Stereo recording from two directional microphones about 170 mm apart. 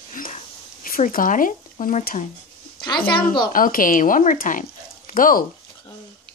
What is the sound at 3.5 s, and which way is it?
Speech, 55° left (ahead or behind).